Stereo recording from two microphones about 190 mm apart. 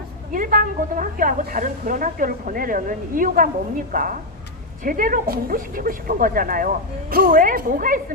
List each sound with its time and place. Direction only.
0.3 s a woman's voice: 45° right (ahead or behind)